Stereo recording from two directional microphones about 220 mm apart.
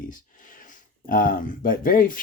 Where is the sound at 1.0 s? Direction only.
40° left (ahead or behind).